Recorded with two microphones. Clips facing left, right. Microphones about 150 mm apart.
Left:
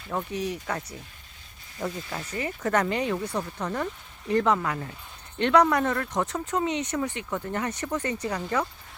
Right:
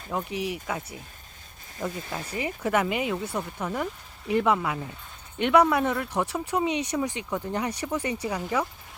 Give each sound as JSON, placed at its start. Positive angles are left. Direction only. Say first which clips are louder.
{"t": 0.1, "sound": "speech", "louder": "even", "side_deg": -10}
{"t": 2.3, "sound": "speech", "louder": "even", "side_deg": -10}